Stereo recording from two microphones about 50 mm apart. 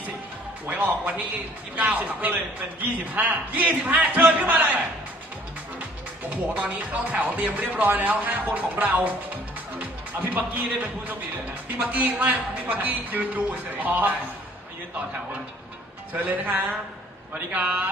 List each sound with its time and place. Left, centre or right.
0.7 s a man's voice: right
6.3 s a man's voice: right
9.7 s music: right
10.8 s a man's voice: right
16.1 s a man's voice: right